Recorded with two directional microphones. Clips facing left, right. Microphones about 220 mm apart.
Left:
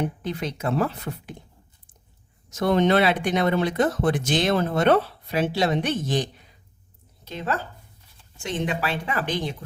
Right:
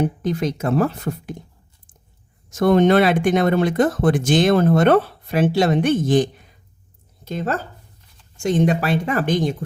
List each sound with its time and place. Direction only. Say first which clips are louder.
0.0 s speech: right 7 dB; 45° right (ahead or behind)
2.5 s speech: right 5 dB; 50° right (ahead or behind)